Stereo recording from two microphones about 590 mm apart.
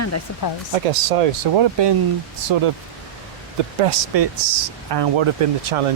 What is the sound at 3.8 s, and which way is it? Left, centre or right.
Speech, right.